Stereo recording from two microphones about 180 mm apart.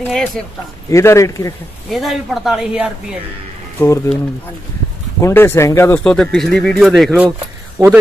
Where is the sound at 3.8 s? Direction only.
15° left (ahead or behind).